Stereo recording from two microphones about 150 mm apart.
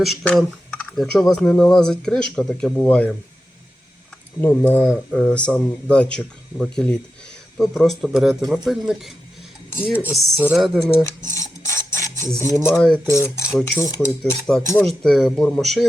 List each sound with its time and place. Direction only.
0.0 s speech: centre (ahead or behind)
2.8 s speech: 10° left (ahead or behind)
4.4 s speech: 15° left (ahead or behind)
4.8 s speech: centre (ahead or behind)
10.2 s speech: centre (ahead or behind)
11.0 s cutlery: 20° left (ahead or behind)
11.9 s a sound: 20° left (ahead or behind)
12.4 s cutlery: 20° left (ahead or behind)
12.7 s speech: 5° left (ahead or behind)
13.1 s cutlery: 20° left (ahead or behind)
13.7 s speech: 15° left (ahead or behind)
15.0 s speech: 5° left (ahead or behind)